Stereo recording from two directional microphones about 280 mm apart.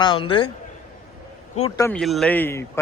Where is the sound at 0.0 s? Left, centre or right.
Centre.